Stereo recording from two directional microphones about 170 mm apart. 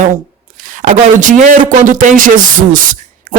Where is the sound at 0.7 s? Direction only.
50° right (ahead or behind).